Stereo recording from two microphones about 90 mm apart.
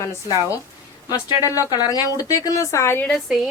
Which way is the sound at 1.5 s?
40° left (ahead or behind).